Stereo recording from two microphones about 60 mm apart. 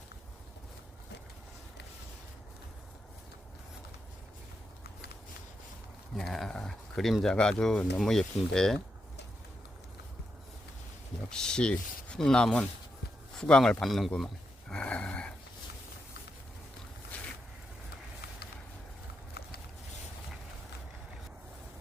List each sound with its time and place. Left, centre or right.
6.1 s speech: centre
11.3 s speech: centre
13.8 s speech: centre
14.7 s a sound: centre